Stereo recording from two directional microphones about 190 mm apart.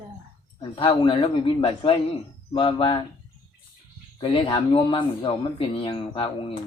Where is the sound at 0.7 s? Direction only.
25° left (ahead or behind).